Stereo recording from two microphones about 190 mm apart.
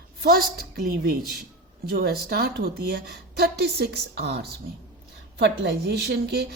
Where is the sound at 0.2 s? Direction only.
50° right (ahead or behind).